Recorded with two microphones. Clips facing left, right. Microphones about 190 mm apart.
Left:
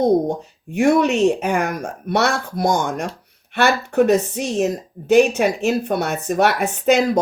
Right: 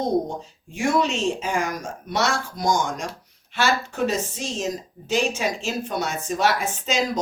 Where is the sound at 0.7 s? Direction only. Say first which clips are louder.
Left 7 dB; 60° left (ahead or behind).